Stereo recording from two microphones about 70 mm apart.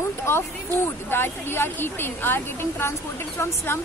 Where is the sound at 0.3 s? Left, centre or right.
Left.